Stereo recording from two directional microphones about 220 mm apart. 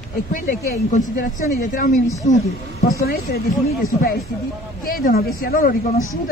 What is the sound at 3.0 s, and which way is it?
Speech, 45° left (ahead or behind).